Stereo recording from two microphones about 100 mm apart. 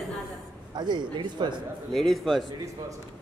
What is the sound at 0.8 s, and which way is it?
Speech, 50° right (ahead or behind).